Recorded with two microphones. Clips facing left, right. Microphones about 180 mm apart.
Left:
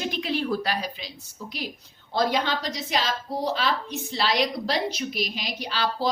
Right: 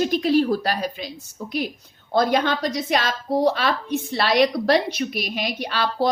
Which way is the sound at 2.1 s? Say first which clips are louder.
Right 5 dB; 50° right (ahead or behind).